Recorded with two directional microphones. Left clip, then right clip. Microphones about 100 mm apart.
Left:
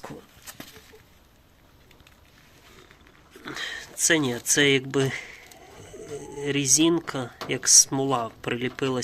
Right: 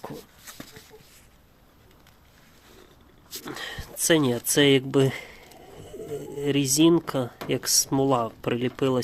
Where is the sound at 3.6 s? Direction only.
40° right (ahead or behind).